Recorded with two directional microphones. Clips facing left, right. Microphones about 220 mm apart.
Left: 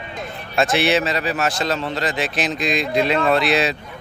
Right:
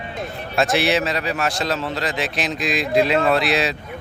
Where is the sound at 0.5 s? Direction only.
Centre (ahead or behind).